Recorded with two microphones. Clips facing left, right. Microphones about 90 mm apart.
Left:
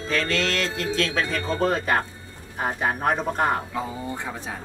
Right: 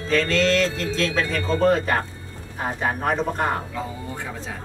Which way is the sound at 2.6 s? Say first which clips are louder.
Even; 10° left (ahead or behind).